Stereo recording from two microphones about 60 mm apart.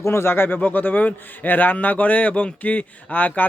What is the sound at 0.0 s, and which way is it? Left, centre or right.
A man's voice, left.